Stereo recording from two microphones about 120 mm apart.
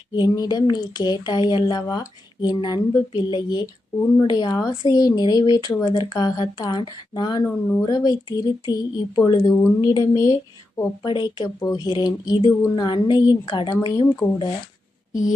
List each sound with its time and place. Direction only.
0.1 s speech: 35° left (ahead or behind)
7.4 s speech: 15° left (ahead or behind)
7.9 s speech: 35° left (ahead or behind)